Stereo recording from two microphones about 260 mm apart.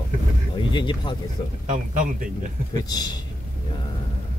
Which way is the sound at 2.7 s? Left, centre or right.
Centre.